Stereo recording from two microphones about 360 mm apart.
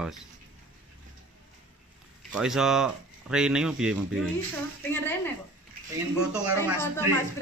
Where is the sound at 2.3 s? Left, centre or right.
Centre.